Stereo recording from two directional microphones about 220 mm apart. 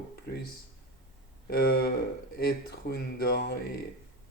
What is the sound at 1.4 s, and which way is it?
Speech, 45° left (ahead or behind).